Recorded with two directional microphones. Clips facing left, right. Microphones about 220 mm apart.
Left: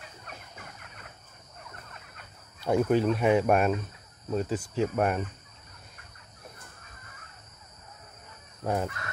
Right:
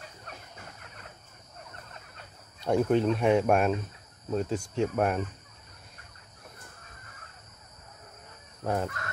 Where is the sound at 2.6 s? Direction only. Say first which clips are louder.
Even; 5° left (ahead or behind).